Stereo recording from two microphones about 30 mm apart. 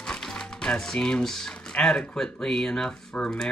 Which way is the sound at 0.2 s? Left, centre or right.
Centre.